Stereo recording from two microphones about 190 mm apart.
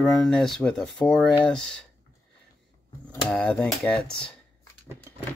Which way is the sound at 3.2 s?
5° left (ahead or behind).